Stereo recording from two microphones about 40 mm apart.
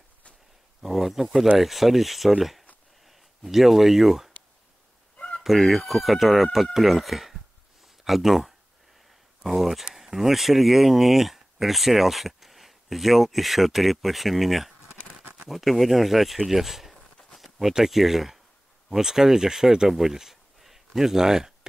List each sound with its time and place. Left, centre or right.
0.8 s speech: centre
5.1 s fowl: left
5.4 s speech: centre